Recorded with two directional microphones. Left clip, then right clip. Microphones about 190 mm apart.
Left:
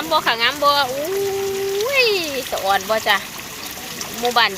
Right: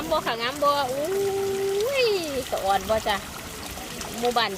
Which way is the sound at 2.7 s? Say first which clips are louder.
Left 6 dB; 10° right (ahead or behind).